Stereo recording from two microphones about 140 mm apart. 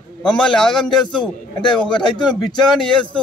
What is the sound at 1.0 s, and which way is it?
Speech, 35° left (ahead or behind).